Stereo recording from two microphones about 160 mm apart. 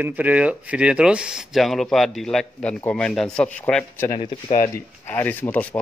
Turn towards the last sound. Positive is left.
turn(degrees=10)  # may be behind; listen again after turning